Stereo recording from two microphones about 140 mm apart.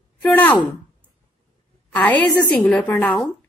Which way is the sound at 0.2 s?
15° left (ahead or behind).